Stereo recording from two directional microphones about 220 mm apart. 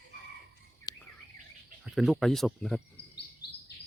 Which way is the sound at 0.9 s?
15° left (ahead or behind).